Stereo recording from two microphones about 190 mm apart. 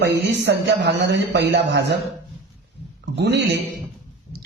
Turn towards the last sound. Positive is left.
turn(degrees=-60)  # may be behind; listen again after turning